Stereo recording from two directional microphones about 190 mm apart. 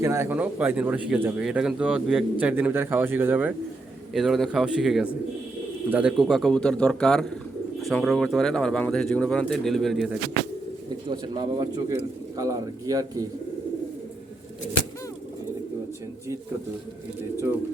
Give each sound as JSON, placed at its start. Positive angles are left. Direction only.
{"t": 0.0, "sound": "speech", "side_deg": -15}
{"t": 11.1, "sound": "speech", "side_deg": -20}